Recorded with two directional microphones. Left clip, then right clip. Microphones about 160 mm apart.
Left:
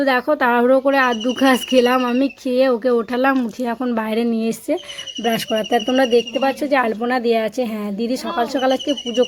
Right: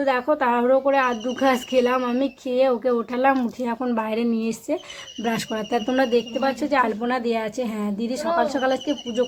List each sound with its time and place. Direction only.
0.0 s speech: 30° left (ahead or behind)
3.3 s speech: 20° left (ahead or behind)